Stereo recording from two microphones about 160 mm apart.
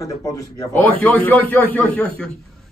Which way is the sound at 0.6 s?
10° left (ahead or behind).